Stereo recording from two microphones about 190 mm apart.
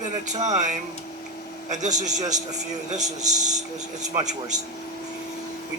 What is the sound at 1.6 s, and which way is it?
Speech, 40° right (ahead or behind).